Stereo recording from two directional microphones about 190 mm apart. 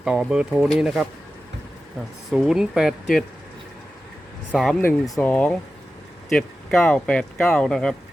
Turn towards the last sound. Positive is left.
turn(degrees=5)  # may be behind; listen again after turning